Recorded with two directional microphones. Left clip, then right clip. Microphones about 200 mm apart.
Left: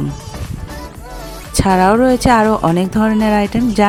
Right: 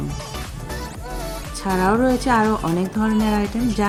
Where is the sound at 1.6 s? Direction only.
45° left (ahead or behind).